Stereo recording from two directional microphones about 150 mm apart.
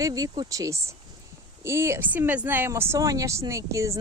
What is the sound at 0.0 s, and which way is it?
Speech, 25° right (ahead or behind).